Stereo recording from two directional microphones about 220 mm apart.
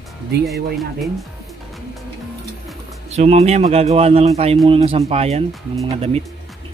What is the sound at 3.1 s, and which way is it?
Speech, 30° right (ahead or behind).